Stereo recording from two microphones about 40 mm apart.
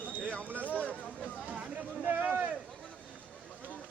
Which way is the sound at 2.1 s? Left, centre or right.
Right.